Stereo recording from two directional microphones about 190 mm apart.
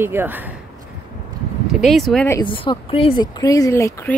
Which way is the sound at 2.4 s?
25° left (ahead or behind).